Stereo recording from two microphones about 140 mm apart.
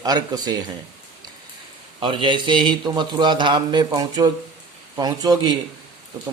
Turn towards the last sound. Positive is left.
turn(degrees=-30)  # may be behind; listen again after turning